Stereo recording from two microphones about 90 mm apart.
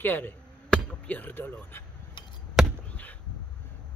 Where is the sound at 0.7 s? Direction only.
10° left (ahead or behind).